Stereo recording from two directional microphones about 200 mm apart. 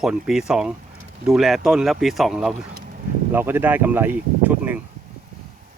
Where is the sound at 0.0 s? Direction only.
5° right (ahead or behind).